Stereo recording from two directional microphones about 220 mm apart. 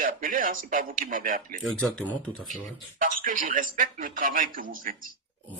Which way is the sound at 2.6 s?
40° right (ahead or behind).